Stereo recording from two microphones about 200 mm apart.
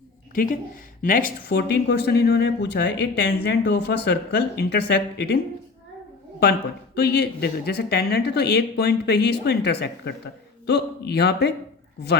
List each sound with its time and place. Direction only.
1.0 s speech: 45° left (ahead or behind)
6.4 s speech: 55° left (ahead or behind)